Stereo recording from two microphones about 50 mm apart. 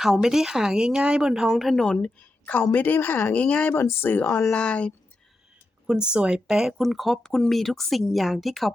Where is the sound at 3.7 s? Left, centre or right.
Left.